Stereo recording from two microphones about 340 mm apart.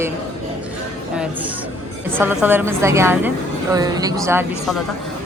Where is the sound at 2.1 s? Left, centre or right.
Centre.